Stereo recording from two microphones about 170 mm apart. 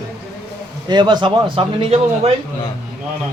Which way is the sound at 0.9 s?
25° right (ahead or behind).